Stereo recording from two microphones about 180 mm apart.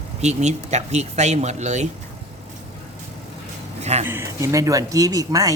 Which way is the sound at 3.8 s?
40° right (ahead or behind).